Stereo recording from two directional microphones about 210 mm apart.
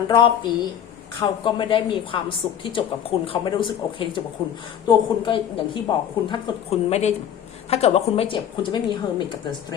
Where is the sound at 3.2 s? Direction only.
25° left (ahead or behind).